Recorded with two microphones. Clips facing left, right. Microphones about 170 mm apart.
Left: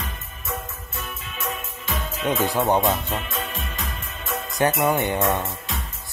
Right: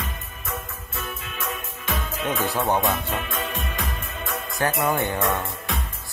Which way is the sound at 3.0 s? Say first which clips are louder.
Even; 50° right (ahead or behind).